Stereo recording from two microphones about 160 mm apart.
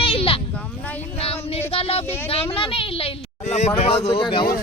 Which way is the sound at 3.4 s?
45° left (ahead or behind).